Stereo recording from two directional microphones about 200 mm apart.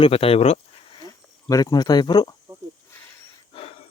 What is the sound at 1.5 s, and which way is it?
Speech, 20° left (ahead or behind).